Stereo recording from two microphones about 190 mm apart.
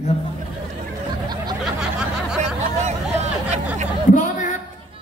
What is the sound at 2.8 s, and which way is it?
Hubbub, 35° right (ahead or behind).